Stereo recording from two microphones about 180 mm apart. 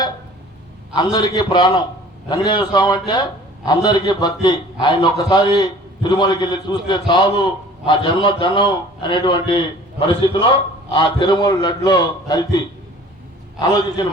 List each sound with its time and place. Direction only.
0.9 s a man's voice: 25° left (ahead or behind)